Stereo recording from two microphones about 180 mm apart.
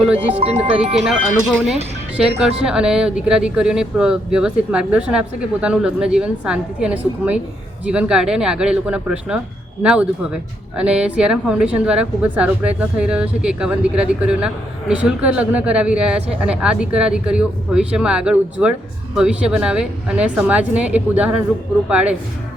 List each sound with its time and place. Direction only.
0.3 s speech: 35° right (ahead or behind)
1.0 s speech: 5° right (ahead or behind)